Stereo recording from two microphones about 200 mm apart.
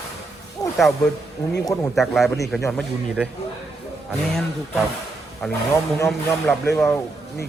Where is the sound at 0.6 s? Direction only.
15° left (ahead or behind).